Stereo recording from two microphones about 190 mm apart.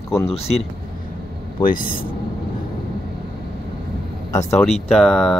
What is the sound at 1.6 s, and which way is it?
Speech, 45° left (ahead or behind).